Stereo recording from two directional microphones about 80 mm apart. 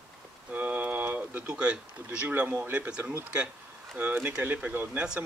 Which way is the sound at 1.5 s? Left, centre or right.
Centre.